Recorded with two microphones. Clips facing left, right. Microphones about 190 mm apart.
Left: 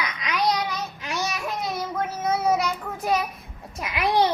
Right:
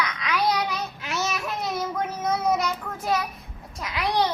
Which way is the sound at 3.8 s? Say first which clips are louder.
Left 3 dB; 20° left (ahead or behind).